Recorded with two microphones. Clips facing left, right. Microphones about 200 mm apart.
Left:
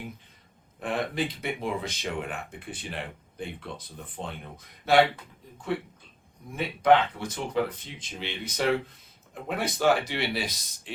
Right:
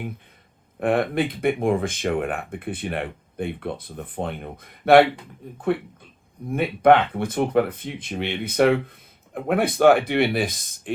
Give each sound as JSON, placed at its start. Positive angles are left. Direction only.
{"t": 0.8, "sound": "speech", "side_deg": -60}